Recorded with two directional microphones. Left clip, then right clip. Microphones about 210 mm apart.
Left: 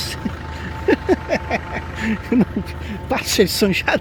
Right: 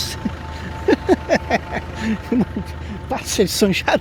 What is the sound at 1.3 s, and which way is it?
Vehicle, 30° right (ahead or behind).